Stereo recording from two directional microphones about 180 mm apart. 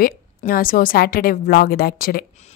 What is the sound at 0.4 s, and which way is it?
A woman's voice, 50° left (ahead or behind).